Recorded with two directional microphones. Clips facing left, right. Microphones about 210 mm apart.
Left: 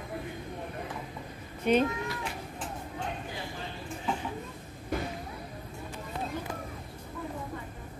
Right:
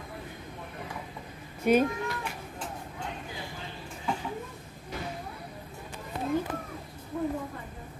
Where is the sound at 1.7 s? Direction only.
10° right (ahead or behind).